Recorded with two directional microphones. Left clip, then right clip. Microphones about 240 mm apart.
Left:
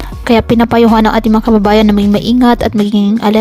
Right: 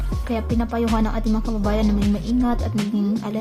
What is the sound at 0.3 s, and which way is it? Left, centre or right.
A woman's voice, left.